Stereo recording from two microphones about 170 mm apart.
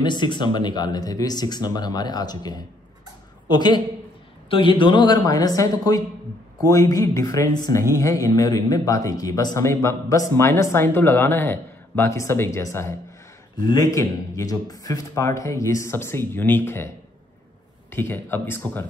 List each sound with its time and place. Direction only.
0.0 s a man's voice: 25° left (ahead or behind); by 18.9 s 10° left (ahead or behind)